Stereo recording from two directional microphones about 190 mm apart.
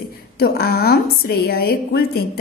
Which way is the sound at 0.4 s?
55° left (ahead or behind).